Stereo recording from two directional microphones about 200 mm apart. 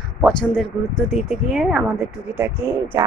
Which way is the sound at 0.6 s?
Centre (ahead or behind).